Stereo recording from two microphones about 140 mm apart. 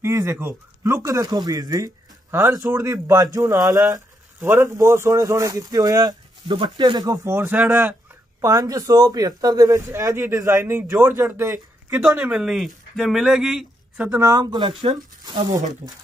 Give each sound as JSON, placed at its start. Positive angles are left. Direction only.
{"t": 0.0, "sound": "speech", "side_deg": -20}
{"t": 8.4, "sound": "speech", "side_deg": -25}
{"t": 12.2, "sound": "speech", "side_deg": -5}
{"t": 14.2, "sound": "speech", "side_deg": -25}